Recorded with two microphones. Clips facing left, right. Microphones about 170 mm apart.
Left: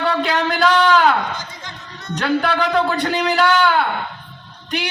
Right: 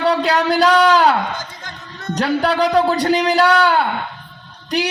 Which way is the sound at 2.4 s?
35° right (ahead or behind).